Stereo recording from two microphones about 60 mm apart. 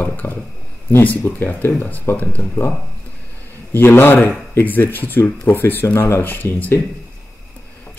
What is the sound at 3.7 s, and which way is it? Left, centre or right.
Speech, left.